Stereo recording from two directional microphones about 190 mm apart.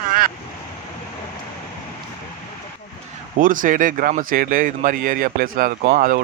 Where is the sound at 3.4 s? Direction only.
45° right (ahead or behind).